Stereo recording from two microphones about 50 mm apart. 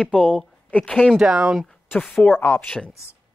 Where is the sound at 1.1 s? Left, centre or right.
Centre.